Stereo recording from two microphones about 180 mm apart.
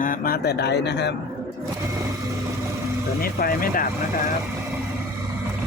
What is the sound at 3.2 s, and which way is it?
Speech, 55° left (ahead or behind).